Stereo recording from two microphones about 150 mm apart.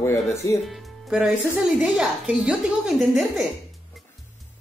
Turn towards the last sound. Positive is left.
turn(degrees=0)  # may be behind; listen again after turning